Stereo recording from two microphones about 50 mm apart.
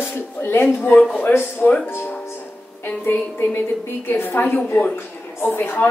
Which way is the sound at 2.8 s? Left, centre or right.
Left.